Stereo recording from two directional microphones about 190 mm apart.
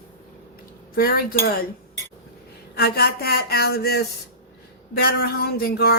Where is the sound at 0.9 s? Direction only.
50° left (ahead or behind).